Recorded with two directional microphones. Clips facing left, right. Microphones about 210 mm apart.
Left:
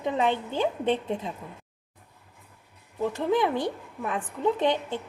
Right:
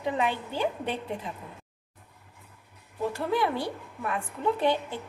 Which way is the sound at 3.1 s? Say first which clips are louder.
Left 3 dB; 20° left (ahead or behind).